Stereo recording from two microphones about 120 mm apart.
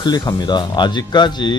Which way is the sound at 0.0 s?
35° left (ahead or behind).